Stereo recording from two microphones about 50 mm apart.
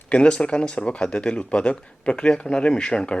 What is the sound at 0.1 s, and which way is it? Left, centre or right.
Speech, centre.